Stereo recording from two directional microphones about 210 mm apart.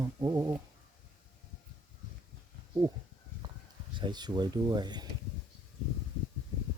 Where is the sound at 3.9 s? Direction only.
20° right (ahead or behind).